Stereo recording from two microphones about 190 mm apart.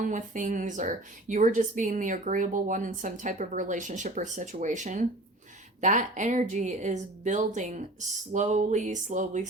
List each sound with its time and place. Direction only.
0.0 s a woman's voice: 40° right (ahead or behind)